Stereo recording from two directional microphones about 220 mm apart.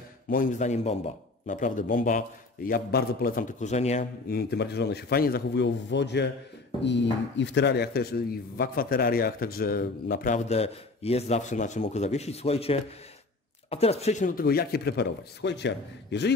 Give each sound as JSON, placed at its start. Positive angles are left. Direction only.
{"t": 0.3, "sound": "speech", "side_deg": 35}
{"t": 4.3, "sound": "speech", "side_deg": 45}